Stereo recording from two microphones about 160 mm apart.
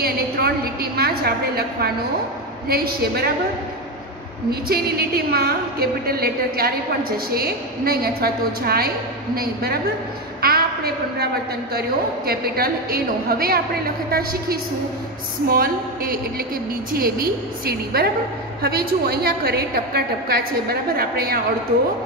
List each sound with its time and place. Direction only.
0.0 s a woman's voice: 75° right (ahead or behind)
4.5 s a woman's voice: 70° right (ahead or behind)
10.4 s a sound: 75° right (ahead or behind)
12.3 s a woman's voice: 70° right (ahead or behind)
15.4 s a sound: 65° right (ahead or behind)
16.9 s a woman's voice: 65° right (ahead or behind)